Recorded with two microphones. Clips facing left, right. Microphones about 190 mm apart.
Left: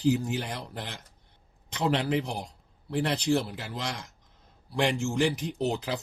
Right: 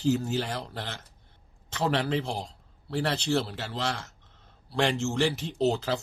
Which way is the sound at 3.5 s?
80° right.